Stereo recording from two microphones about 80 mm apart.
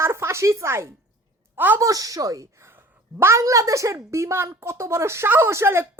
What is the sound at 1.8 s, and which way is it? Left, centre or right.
A woman's voice, right.